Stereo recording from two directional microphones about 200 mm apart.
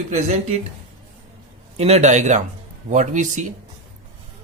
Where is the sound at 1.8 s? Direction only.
35° right (ahead or behind).